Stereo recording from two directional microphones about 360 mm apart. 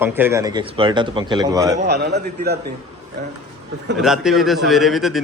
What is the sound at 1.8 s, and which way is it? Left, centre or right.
Speech, right.